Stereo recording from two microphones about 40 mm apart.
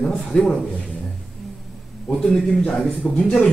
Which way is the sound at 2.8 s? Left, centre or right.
Left.